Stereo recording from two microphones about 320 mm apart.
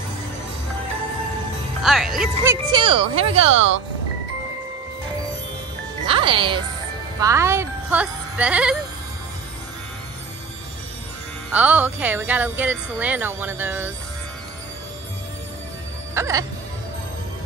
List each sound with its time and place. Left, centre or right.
1.8 s speech: centre
2.7 s speech: centre
6.0 s speech: centre
11.5 s speech: centre
16.2 s speech: centre